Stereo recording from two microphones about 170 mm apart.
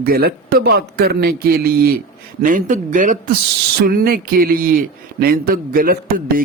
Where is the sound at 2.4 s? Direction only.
50° right (ahead or behind).